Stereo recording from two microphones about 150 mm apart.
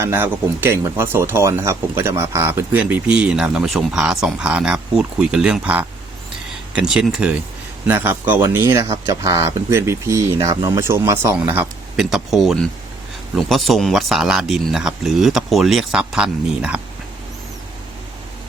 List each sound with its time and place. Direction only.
0.0 s speech: 15° right (ahead or behind)